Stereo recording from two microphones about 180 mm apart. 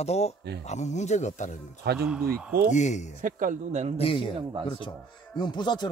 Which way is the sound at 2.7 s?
40° left (ahead or behind).